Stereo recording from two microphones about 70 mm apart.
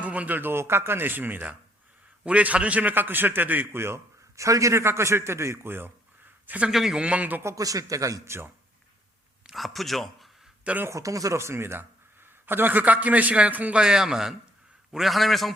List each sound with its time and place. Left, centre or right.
0.0 s a man's voice: right
6.7 s a man's voice: centre; by 7.4 s right
7.4 s speech: right
9.5 s speech: centre
10.6 s speech: centre
10.8 s speech: right
11.3 s a man's voice: right
13.8 s a man's voice: centre